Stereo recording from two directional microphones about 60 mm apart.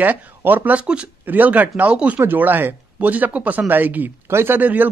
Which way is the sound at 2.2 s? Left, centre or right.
Right.